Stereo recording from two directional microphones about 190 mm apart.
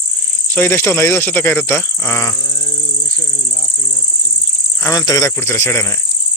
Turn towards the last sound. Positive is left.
turn(degrees=15)  # may be behind; listen again after turning